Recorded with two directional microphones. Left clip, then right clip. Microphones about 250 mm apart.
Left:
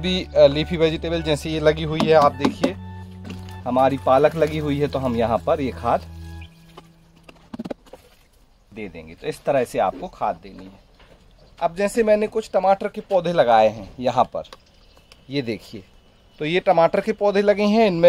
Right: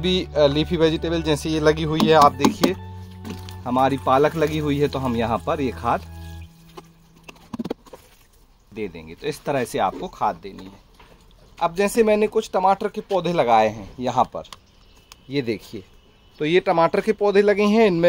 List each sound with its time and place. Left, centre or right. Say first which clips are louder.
0.0 s speech: left 3 dB; centre
3.6 s speech: left 2 dB; centre
8.7 s speech: right 4 dB; centre
11.5 s speech: right 1 dB; right; by 18.0 s centre